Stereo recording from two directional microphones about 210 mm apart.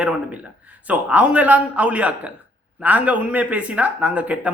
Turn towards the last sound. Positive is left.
turn(degrees=-5)  # may be behind; listen again after turning